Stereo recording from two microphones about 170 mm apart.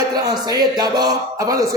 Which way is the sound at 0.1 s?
25° right (ahead or behind).